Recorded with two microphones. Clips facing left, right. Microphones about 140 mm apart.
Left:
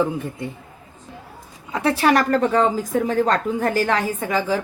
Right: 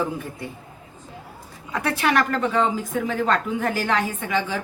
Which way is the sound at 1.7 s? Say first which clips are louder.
Left 4 dB; 30° left (ahead or behind).